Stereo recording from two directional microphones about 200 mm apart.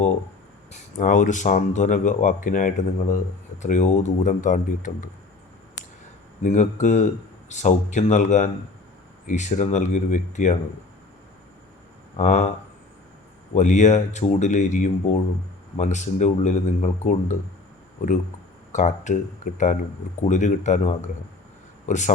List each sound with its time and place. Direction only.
0.7 s speech: 40° left (ahead or behind)
6.4 s speech: 40° left (ahead or behind)
12.1 s speech: 35° left (ahead or behind)
13.6 s speech: 35° left (ahead or behind)
18.7 s speech: 35° left (ahead or behind)